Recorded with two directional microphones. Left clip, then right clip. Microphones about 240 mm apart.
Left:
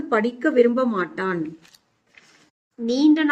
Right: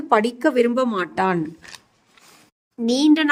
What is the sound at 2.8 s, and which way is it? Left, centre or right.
Speech, right.